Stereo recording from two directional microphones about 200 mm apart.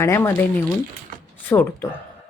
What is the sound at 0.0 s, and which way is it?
Speech, 15° left (ahead or behind).